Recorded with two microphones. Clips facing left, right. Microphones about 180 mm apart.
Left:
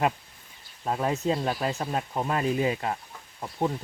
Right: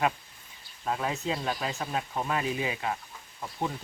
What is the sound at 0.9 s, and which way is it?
Speech, 40° left (ahead or behind).